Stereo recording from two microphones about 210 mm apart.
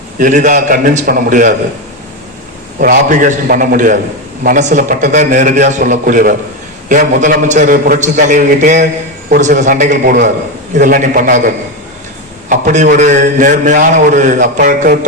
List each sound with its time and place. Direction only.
0.2 s a man's voice: 40° right (ahead or behind)
2.8 s a man's voice: 40° right (ahead or behind)